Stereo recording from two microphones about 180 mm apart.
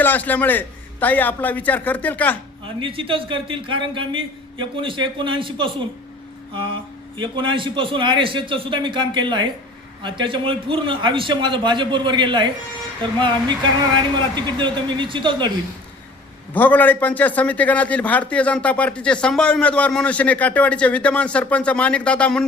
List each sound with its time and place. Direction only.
0.0 s a man's voice: 10° left (ahead or behind)
2.6 s a man's voice: 30° right (ahead or behind)
6.5 s music: 30° right (ahead or behind)
7.2 s a man's voice: 25° right (ahead or behind)
14.3 s a man's voice: 25° right (ahead or behind)
16.6 s a man's voice: 10° left (ahead or behind)